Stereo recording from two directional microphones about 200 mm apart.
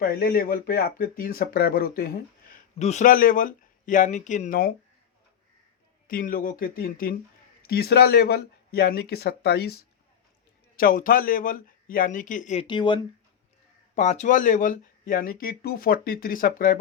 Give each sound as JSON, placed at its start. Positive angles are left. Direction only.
{"t": 0.0, "sound": "speech", "side_deg": 50}
{"t": 2.7, "sound": "speech", "side_deg": 35}
{"t": 6.1, "sound": "speech", "side_deg": 45}
{"t": 10.8, "sound": "speech", "side_deg": 45}
{"t": 12.6, "sound": "speech", "side_deg": 25}
{"t": 13.9, "sound": "speech", "side_deg": 35}